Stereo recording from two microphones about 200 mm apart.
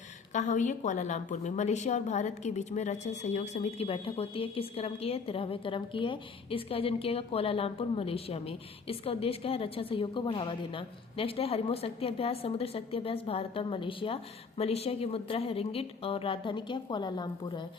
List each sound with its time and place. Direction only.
0.3 s a woman's voice: 40° left (ahead or behind); by 17.7 s 20° left (ahead or behind)